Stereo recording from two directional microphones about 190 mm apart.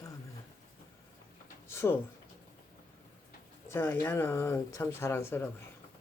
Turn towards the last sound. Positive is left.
turn(degrees=10)  # may be behind; listen again after turning